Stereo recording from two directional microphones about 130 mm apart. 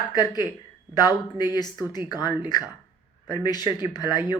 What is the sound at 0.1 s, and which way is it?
Speech, 30° left (ahead or behind).